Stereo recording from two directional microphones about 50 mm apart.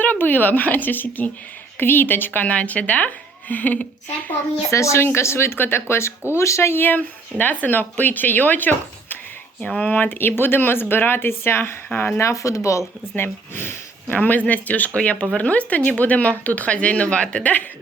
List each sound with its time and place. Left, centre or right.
0.0 s speech: left
2.4 s speech: left
4.7 s speech: left
5.0 s speech: left
5.5 s speech: left
6.3 s speech: left
6.8 s speech: left
11.9 s speech: left
12.2 s speech: left
13.1 s speech: left
14.2 s speech: left